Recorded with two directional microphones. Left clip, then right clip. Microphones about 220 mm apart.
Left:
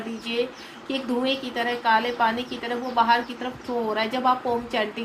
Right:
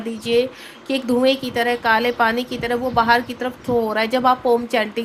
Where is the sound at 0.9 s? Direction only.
55° right (ahead or behind).